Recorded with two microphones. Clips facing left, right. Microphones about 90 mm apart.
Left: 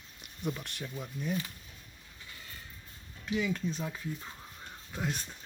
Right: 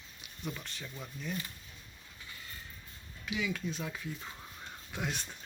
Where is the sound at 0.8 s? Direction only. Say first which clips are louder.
Left 7 dB; 10° left (ahead or behind).